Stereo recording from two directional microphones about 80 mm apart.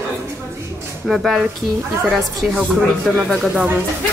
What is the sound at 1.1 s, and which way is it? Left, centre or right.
Speech, centre.